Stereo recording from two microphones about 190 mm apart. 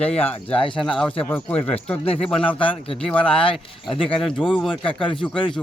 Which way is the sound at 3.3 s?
30° left (ahead or behind).